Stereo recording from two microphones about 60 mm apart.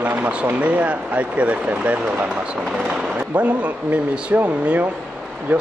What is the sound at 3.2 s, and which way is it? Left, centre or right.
Speech, right.